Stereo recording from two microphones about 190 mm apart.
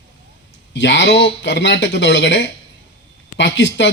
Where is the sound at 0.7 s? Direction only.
70° left (ahead or behind).